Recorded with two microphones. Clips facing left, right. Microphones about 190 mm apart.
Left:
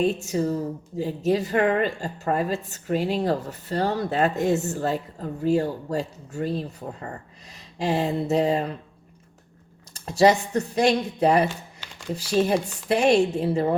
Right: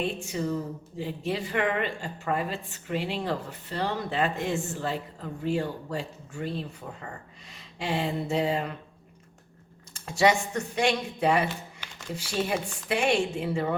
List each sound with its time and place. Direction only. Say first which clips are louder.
0.0 s a woman's voice: left 7 dB; 40° left (ahead or behind)
9.9 s a woman's voice: left 5 dB; 35° left (ahead or behind)